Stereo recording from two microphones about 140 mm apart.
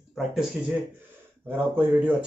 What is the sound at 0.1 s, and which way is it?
Speech, 5° right (ahead or behind).